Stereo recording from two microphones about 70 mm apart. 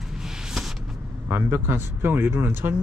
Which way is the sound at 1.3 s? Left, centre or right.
Right.